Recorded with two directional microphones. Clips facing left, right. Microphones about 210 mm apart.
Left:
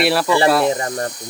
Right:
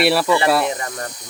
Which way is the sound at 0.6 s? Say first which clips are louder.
Left 5 dB; 35° left (ahead or behind).